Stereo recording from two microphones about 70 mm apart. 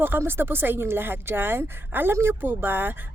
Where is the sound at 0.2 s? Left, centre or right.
Right.